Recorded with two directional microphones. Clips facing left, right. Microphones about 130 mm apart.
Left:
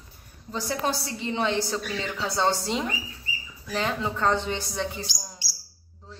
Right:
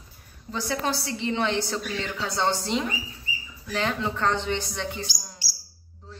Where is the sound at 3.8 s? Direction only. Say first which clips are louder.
Even; 5° left (ahead or behind).